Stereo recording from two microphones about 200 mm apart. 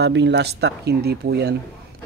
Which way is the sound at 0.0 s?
60° right (ahead or behind).